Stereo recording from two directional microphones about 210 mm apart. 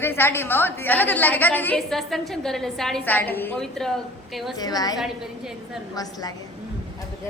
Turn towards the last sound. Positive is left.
turn(degrees=15)  # may be behind; listen again after turning